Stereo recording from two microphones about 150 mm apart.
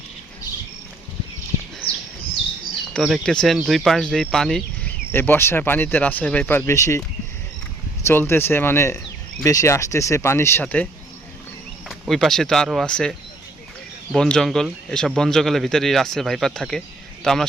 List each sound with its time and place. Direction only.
3.0 s speech: centre (ahead or behind); by 7.0 s 20° left (ahead or behind)
8.0 s speech: 15° left (ahead or behind)
11.9 s speech: centre (ahead or behind)